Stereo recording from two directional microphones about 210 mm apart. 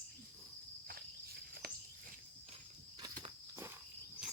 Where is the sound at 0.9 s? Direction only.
45° right (ahead or behind).